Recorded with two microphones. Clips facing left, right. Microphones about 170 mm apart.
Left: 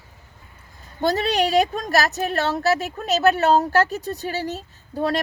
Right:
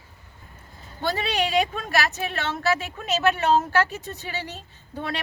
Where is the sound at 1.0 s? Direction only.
40° left (ahead or behind).